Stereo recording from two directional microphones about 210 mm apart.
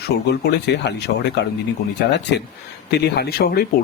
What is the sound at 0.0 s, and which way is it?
Speech, 50° left (ahead or behind).